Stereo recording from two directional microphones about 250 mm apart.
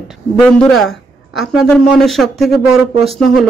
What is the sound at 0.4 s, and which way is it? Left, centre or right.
A man's voice, centre.